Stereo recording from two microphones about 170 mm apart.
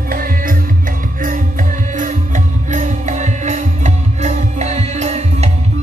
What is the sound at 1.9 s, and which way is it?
Music, 45° right (ahead or behind).